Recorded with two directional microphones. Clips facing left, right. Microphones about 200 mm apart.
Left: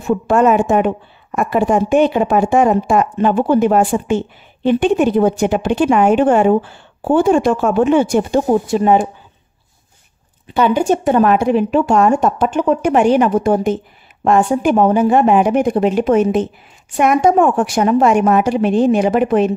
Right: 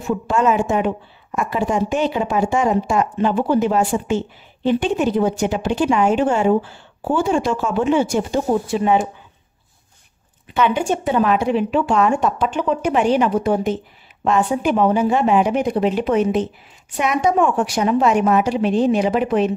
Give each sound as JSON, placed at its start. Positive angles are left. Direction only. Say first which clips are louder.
{"t": 0.1, "sound": "speech", "louder": "left 5 dB", "side_deg": 55}
{"t": 10.5, "sound": "speech", "louder": "left 5 dB", "side_deg": 35}